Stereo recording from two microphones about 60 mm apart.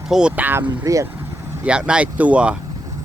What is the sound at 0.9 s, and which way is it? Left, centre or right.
Speech, right.